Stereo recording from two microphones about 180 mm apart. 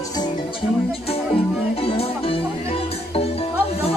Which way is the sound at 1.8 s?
30° left (ahead or behind).